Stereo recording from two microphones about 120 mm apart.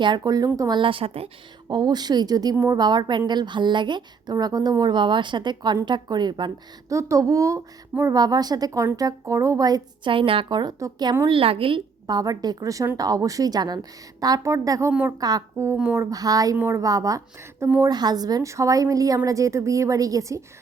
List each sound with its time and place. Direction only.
0.2 s a woman's voice: 30° right (ahead or behind)
0.8 s a woman's voice: 50° right (ahead or behind)
1.7 s a woman's voice: 35° right (ahead or behind)
6.9 s a woman's voice: 25° right (ahead or behind)
10.1 s a woman's voice: 45° right (ahead or behind); by 11.1 s 30° right (ahead or behind)
11.3 s a woman's voice: 50° right (ahead or behind)
12.0 s a woman's voice: 30° right (ahead or behind)
16.0 s a woman's voice: 30° right (ahead or behind)